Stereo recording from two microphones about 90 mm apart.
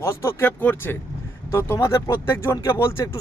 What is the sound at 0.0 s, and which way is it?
A man's voice, 30° left (ahead or behind).